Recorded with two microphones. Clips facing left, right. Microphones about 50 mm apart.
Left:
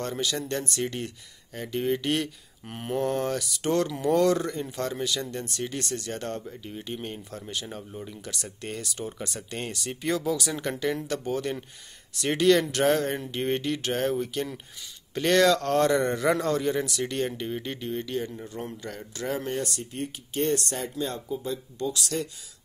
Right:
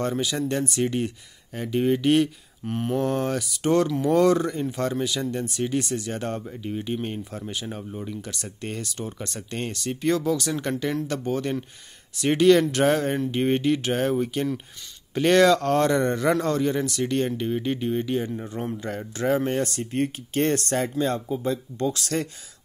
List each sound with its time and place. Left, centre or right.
0.0 s speech: centre
2.6 s speech: centre
17.7 s speech: centre
18.3 s speech: right